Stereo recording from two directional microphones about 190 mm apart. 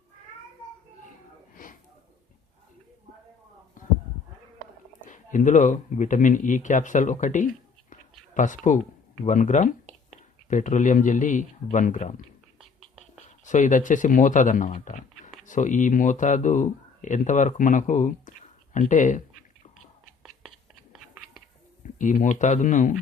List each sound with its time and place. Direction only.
1.6 s a sound: 45° left (ahead or behind)
3.8 s a sound: 45° left (ahead or behind)
5.0 s speech: 40° left (ahead or behind)
13.4 s speech: 40° left (ahead or behind)
20.9 s biting: centre (ahead or behind)
21.8 s speech: 40° left (ahead or behind)